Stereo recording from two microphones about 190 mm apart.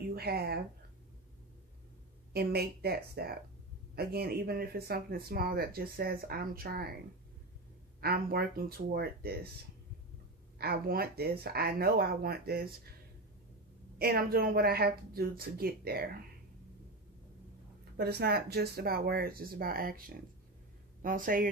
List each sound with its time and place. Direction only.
0.1 s a woman's voice: 55° right (ahead or behind)
2.3 s speech: 55° right (ahead or behind)
8.0 s speech: 55° right (ahead or behind)
10.6 s speech: 55° right (ahead or behind)
13.9 s speech: 50° right (ahead or behind)
17.9 s speech: 60° right (ahead or behind)
21.0 s speech: 45° right (ahead or behind)